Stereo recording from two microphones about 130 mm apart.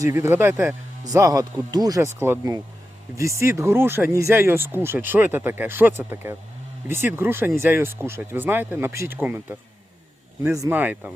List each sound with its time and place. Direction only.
0.0 s speech: 20° right (ahead or behind)
10.7 s speech: 15° right (ahead or behind)